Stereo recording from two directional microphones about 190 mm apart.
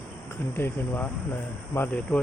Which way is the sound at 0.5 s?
10° left (ahead or behind).